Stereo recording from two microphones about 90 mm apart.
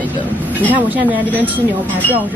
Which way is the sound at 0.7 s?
20° right (ahead or behind).